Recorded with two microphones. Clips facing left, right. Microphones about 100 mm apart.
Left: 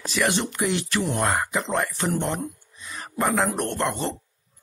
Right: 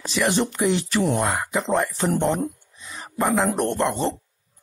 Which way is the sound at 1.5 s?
20° right (ahead or behind).